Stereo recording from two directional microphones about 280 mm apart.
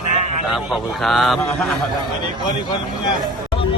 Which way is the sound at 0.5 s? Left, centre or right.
Centre.